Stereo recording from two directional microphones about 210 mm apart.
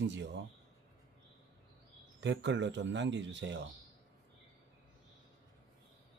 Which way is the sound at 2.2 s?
60° right (ahead or behind).